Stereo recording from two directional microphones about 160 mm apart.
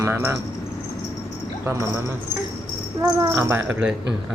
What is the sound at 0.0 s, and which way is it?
Speech, 15° right (ahead or behind).